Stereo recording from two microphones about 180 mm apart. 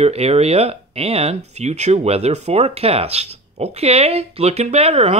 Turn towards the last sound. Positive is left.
turn(degrees=-35)  # may be behind; listen again after turning